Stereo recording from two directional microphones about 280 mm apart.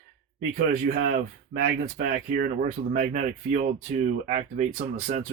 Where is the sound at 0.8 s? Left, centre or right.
Right.